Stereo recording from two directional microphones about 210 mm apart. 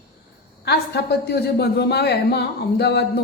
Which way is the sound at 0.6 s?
50° left (ahead or behind).